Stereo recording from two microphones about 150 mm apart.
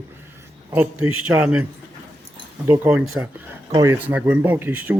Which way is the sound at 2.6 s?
15° right (ahead or behind).